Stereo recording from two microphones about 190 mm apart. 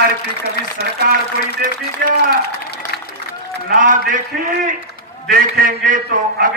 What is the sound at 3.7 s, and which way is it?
A man's voice, 45° right (ahead or behind).